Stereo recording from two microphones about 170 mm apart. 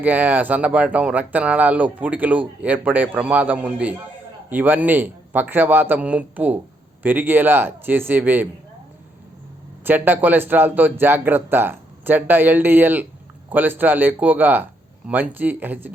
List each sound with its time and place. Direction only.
0.0 s speech: 10° right (ahead or behind)
9.8 s speech: 10° right (ahead or behind)